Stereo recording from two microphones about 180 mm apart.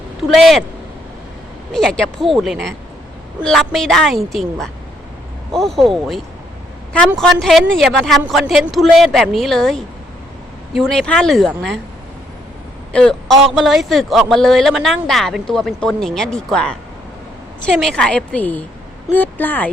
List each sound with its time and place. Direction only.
0.3 s a man's voice: centre (ahead or behind)
1.7 s a man's voice: 5° left (ahead or behind)
12.9 s a man's voice: 5° left (ahead or behind)